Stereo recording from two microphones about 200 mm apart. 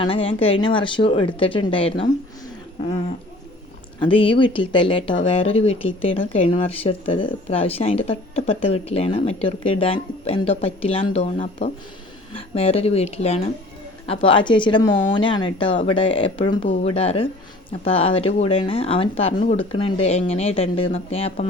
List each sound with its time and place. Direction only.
0.0 s speech: 25° left (ahead or behind)
4.0 s speech: 25° left (ahead or behind)